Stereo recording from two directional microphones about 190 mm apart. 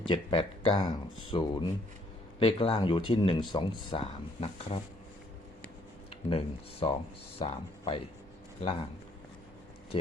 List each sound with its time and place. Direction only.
0.1 s speech: 25° left (ahead or behind)
6.1 s speech: 30° left (ahead or behind)